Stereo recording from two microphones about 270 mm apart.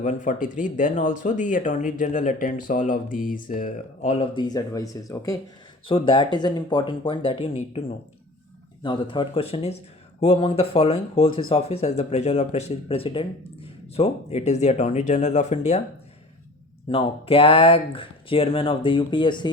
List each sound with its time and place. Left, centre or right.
0.0 s speech: left
16.9 s speech: left